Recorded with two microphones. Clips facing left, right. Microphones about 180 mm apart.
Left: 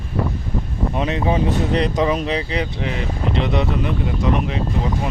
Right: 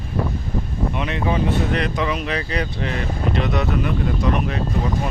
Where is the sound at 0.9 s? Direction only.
30° left (ahead or behind).